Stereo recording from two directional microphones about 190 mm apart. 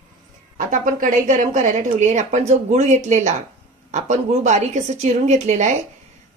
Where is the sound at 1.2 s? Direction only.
40° right (ahead or behind).